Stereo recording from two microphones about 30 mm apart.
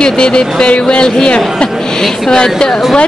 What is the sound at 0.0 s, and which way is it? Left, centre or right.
Speech, left.